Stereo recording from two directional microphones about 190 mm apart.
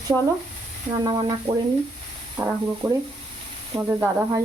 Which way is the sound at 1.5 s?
30° right (ahead or behind).